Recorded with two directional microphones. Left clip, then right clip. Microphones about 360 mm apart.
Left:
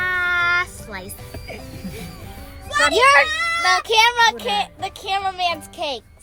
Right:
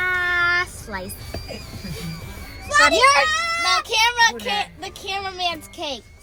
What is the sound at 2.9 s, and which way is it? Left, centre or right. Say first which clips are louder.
Speech: left 6 dB; left.